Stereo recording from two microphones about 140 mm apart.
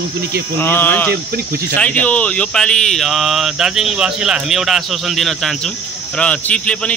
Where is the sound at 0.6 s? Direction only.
15° left (ahead or behind).